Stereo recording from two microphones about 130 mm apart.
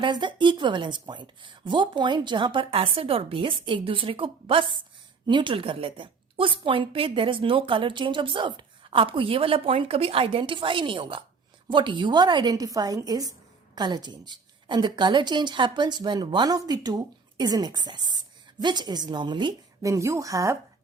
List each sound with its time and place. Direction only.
0.0 s a woman's voice: 35° right (ahead or behind)
19.9 s speech: 25° right (ahead or behind)